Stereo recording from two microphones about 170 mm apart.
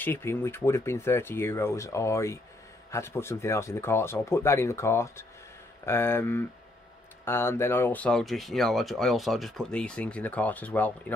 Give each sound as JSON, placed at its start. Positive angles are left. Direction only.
{"t": 0.0, "sound": "speech", "side_deg": 15}